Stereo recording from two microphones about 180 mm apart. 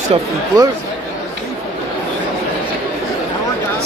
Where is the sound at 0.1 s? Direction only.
35° right (ahead or behind).